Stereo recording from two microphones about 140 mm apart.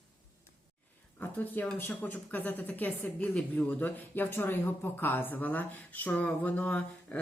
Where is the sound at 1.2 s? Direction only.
15° left (ahead or behind).